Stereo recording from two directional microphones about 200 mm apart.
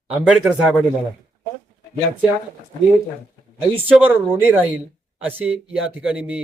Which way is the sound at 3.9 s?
10° right (ahead or behind).